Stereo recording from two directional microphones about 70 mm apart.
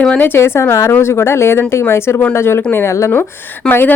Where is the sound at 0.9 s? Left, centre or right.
Left.